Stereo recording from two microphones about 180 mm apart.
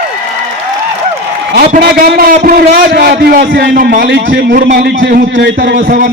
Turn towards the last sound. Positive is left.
turn(degrees=-75)  # may be behind; listen again after turning